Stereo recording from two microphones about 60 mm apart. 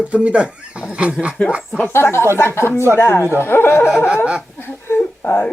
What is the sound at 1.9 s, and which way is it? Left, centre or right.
Speech, left.